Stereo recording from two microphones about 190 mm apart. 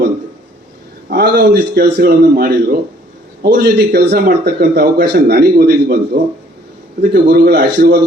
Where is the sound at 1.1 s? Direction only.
55° right (ahead or behind).